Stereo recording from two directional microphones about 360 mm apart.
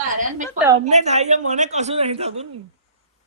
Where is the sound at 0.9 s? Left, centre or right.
Centre.